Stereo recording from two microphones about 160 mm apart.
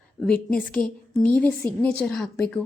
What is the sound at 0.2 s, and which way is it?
A woman's voice, 5° left (ahead or behind).